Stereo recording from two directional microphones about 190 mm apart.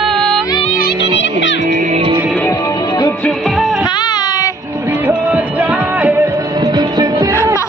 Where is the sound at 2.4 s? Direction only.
15° left (ahead or behind); by 3.8 s centre (ahead or behind).